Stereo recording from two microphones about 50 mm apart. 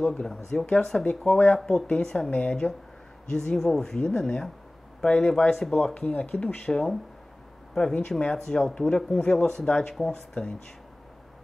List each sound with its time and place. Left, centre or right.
0.0 s speech: centre
1.0 s speech: left
2.6 s speech: left
3.3 s speech: centre
5.9 s speech: left